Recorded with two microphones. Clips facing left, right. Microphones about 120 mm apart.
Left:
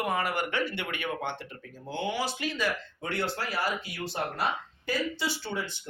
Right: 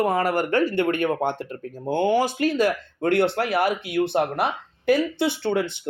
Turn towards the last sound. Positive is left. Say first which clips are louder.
# right 11 dB
turn(degrees=-60)  # may be behind; listen again after turning